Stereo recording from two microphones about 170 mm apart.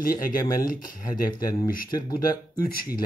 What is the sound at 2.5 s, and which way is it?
Speech, 60° left (ahead or behind).